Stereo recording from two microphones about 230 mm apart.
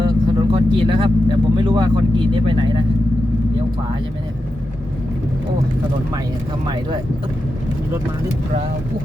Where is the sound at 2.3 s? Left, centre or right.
Right.